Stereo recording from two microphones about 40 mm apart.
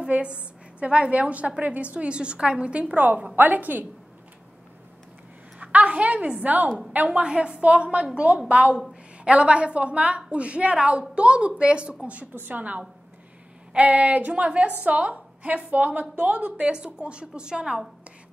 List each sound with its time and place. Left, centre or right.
0.1 s a woman's voice: right
5.6 s a woman's voice: right
6.4 s a woman's voice: right
7.2 s a woman's voice: right